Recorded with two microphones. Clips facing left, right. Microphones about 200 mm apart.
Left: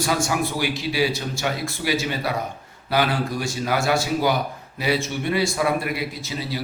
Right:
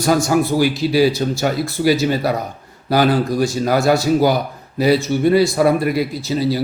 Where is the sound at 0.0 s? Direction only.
40° right (ahead or behind).